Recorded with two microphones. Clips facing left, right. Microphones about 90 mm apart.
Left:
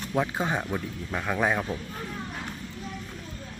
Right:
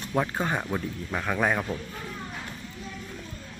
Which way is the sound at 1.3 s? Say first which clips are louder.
Even; 5° left (ahead or behind).